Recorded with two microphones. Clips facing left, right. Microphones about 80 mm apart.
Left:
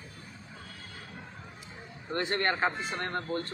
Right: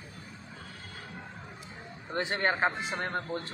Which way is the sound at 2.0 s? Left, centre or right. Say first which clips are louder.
Even; centre.